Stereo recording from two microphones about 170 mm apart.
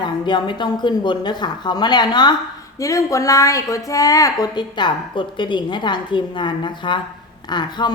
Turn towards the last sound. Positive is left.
turn(degrees=25)  # may be behind; listen again after turning